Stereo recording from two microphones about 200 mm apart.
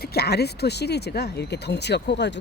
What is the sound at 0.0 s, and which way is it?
Speech, 50° left (ahead or behind).